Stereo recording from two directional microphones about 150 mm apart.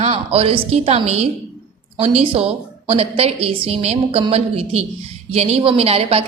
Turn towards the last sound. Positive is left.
turn(degrees=-40)  # may be behind; listen again after turning